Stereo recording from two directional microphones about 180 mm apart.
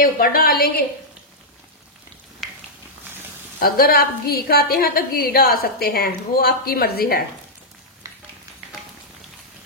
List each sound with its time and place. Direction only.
0.0 s a woman's voice: 55° left (ahead or behind)
3.5 s a woman's voice: 55° left (ahead or behind)
8.0 s a sound: 15° right (ahead or behind)